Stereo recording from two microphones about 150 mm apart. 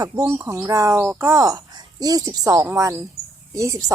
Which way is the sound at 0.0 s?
20° right (ahead or behind).